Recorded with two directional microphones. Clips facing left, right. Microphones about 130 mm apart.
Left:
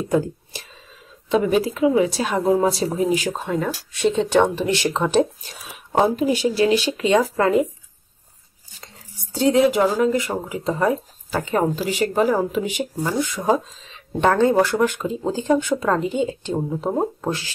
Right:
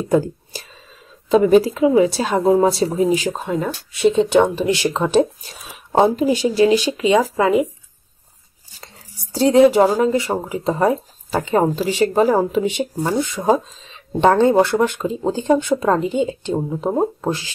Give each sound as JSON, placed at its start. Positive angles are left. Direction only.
{"t": 1.3, "sound": "speech", "side_deg": -35}
{"t": 8.8, "sound": "speech", "side_deg": -35}